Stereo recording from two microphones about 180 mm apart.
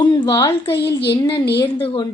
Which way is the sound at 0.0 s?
25° left (ahead or behind).